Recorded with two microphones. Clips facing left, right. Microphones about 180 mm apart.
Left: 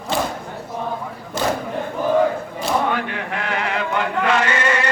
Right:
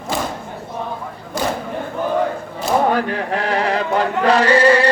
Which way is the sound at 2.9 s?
35° right (ahead or behind).